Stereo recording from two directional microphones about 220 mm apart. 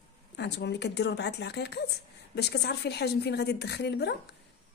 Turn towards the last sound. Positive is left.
turn(degrees=50)  # may be behind; listen again after turning